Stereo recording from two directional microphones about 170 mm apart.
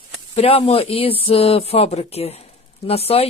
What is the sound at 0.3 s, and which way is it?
Speech, 35° left (ahead or behind).